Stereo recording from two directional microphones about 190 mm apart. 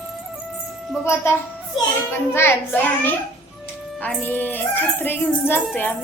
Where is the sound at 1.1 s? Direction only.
15° left (ahead or behind).